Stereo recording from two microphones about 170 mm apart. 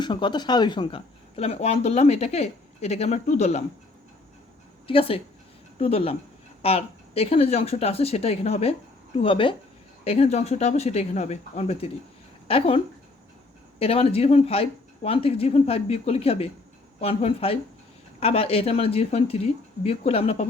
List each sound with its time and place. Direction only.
0.0 s speech: 25° left (ahead or behind); by 3.6 s 40° left (ahead or behind)
4.9 s speech: 35° left (ahead or behind)